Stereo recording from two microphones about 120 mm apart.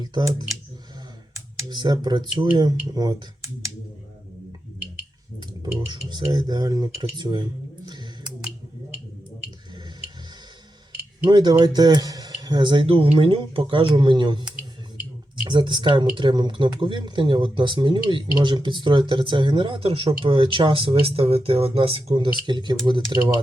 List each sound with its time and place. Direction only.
0.0 s speech: 35° right (ahead or behind)
1.7 s speech: 35° right (ahead or behind)
5.9 s speech: 35° right (ahead or behind)
11.3 s speech: 35° right (ahead or behind)
15.4 s speech: 40° right (ahead or behind)